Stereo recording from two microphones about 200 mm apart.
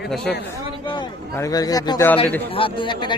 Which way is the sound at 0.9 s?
20° left (ahead or behind).